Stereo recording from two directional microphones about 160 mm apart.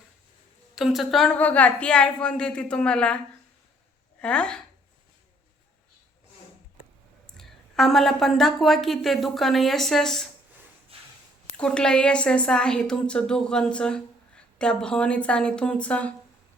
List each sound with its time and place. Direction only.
0.8 s a woman's voice: centre (ahead or behind)
4.2 s a woman's voice: 5° left (ahead or behind)
7.3 s a woman's voice: centre (ahead or behind)
10.9 s a sound: 35° right (ahead or behind)
11.5 s a woman's voice: 5° left (ahead or behind)